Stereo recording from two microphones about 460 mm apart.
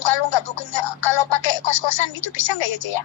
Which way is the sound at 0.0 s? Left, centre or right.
Left.